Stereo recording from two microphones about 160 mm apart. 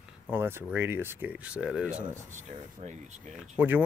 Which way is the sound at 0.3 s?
15° right (ahead or behind).